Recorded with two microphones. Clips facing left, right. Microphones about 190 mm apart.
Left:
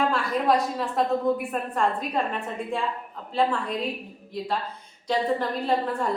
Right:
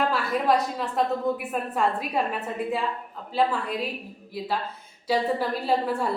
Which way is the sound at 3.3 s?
5° right (ahead or behind).